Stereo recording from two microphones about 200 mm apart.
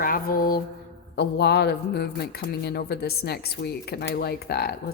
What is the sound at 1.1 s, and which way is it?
Speech, 55° left (ahead or behind).